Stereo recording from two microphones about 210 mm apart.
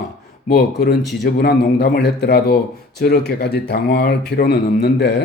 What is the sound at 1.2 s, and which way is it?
Speech, 50° left (ahead or behind).